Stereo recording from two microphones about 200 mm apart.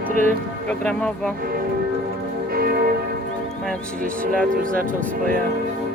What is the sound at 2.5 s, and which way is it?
Church bell, 50° right (ahead or behind).